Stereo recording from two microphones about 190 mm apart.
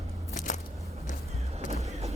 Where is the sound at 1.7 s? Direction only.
35° right (ahead or behind).